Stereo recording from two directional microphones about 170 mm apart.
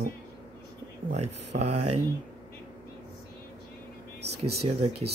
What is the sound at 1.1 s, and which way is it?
Speech, 40° right (ahead or behind).